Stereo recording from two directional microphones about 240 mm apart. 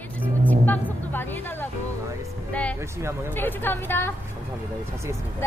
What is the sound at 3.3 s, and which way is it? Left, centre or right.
Speech, centre.